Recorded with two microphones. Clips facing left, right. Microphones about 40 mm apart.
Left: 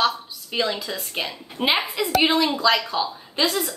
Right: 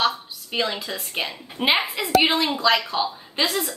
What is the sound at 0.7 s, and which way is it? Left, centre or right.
A woman's voice, centre.